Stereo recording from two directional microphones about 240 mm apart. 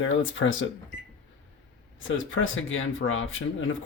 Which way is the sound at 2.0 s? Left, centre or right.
Left.